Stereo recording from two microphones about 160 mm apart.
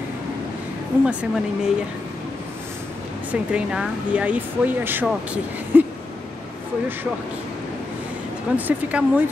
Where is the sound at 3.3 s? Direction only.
5° right (ahead or behind).